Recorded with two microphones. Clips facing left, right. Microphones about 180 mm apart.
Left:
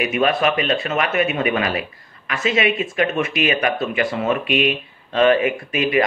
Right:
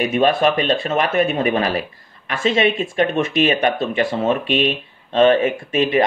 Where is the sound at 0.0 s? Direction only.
30° right (ahead or behind).